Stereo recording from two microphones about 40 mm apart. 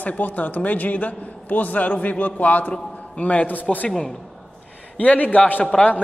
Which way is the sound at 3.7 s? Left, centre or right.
Left.